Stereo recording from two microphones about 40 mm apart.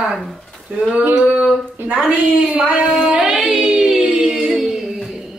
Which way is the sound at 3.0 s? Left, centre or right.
Centre.